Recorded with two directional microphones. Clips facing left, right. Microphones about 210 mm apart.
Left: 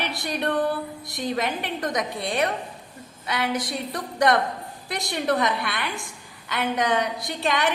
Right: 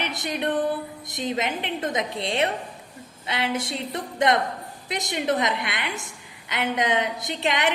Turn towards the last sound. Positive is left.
turn(degrees=-20)  # may be behind; listen again after turning